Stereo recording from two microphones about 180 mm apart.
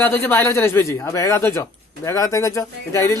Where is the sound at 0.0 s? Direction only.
15° left (ahead or behind).